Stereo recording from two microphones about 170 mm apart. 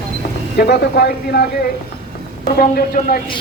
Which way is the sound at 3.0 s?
45° left (ahead or behind).